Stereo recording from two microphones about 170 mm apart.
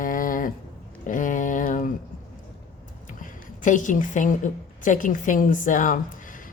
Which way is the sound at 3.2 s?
50° left (ahead or behind).